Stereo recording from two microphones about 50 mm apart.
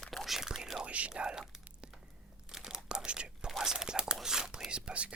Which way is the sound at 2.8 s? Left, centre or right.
Centre.